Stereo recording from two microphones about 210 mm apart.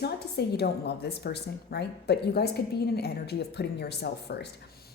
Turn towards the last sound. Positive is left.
turn(degrees=50)  # may be behind; listen again after turning